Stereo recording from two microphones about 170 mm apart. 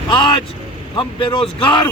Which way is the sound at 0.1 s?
30° left (ahead or behind).